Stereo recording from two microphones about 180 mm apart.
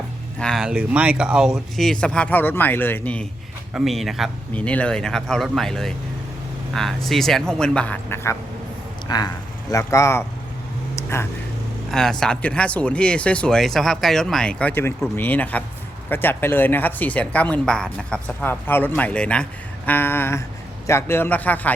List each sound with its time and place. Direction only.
0.3 s speech: centre (ahead or behind)
10.9 s a sound: 15° left (ahead or behind)
11.9 s speech: centre (ahead or behind)